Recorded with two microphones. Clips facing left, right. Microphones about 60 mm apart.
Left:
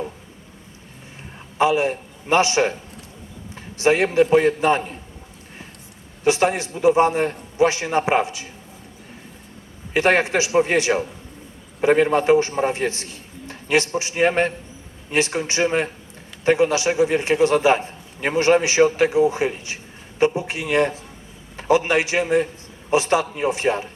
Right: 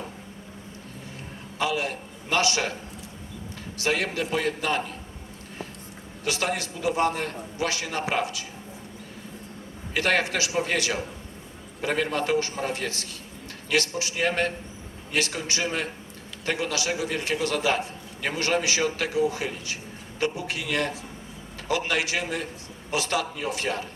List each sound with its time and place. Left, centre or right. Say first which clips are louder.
1.5 s a man's voice: left 9 dB; left
3.8 s a man's voice: left 10 dB; left
6.2 s a man's voice: left 9 dB; left
9.9 s a man's voice: left 7 dB; left